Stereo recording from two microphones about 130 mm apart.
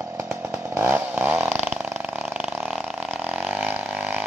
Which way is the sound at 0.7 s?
15° right (ahead or behind).